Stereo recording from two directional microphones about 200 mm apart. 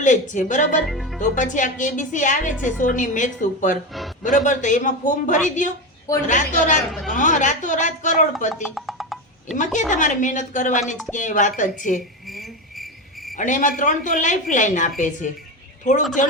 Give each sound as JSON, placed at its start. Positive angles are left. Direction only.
{"t": 0.0, "sound": "a woman's voice", "side_deg": 40}
{"t": 0.9, "sound": "speech", "side_deg": 0}
{"t": 1.2, "sound": "a woman's voice", "side_deg": 40}
{"t": 8.6, "sound": "music", "side_deg": 0}
{"t": 9.9, "sound": "a woman's voice", "side_deg": 40}
{"t": 12.3, "sound": "cricket", "side_deg": 0}
{"t": 13.3, "sound": "a woman's voice", "side_deg": 40}